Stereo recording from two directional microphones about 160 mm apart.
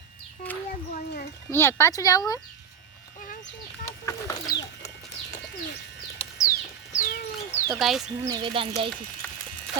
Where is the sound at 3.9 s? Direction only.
20° left (ahead or behind).